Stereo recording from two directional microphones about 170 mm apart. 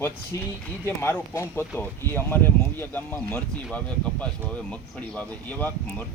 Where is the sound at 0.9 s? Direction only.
15° left (ahead or behind).